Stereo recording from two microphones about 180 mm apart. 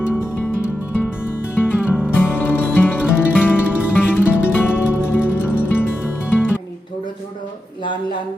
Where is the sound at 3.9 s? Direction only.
10° left (ahead or behind).